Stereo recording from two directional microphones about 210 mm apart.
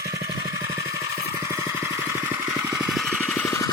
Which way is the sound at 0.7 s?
15° right (ahead or behind).